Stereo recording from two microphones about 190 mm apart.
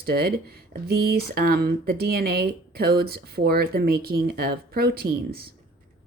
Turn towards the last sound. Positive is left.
turn(degrees=-55)  # may be behind; listen again after turning